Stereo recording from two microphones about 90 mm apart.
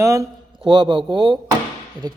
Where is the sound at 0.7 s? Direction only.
60° right (ahead or behind).